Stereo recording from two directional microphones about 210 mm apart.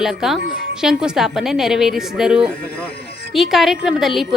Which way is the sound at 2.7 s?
50° left (ahead or behind).